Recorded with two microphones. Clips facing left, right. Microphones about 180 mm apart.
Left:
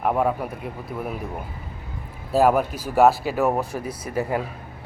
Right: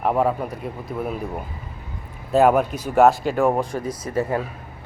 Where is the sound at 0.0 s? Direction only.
Centre (ahead or behind).